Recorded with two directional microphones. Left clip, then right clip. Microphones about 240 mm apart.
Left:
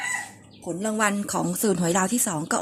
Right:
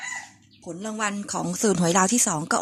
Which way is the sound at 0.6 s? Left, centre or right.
Centre.